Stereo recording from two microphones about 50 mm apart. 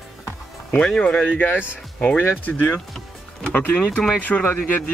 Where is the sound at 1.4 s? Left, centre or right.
Left.